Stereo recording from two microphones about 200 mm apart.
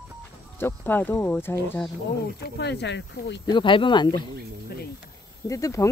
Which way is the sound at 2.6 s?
55° left (ahead or behind).